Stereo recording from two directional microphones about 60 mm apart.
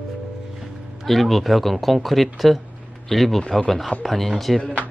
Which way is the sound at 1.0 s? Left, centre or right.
Centre.